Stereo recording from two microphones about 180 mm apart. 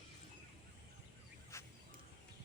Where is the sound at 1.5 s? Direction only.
15° left (ahead or behind).